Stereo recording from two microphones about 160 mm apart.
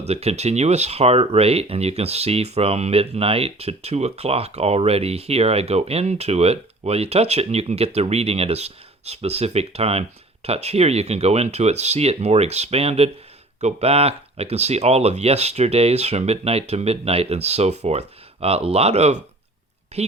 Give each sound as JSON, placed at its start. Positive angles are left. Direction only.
{"t": 0.1, "sound": "a woman's voice", "side_deg": -40}